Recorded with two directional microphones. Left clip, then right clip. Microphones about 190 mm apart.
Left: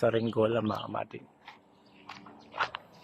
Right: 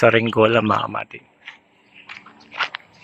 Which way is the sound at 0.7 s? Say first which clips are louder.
Right 15 dB; 30° right (ahead or behind).